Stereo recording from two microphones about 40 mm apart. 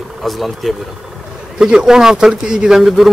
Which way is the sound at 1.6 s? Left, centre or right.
Right.